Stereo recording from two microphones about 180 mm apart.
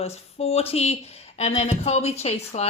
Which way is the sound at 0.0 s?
35° left (ahead or behind).